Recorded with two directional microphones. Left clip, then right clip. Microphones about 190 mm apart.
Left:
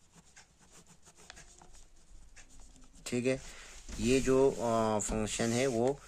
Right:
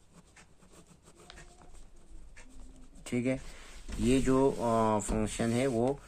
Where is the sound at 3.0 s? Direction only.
30° left (ahead or behind).